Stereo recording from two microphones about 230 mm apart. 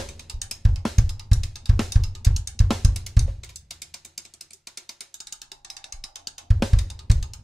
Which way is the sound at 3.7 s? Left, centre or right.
Centre.